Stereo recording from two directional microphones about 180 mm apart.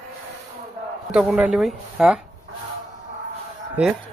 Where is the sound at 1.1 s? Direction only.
5° right (ahead or behind).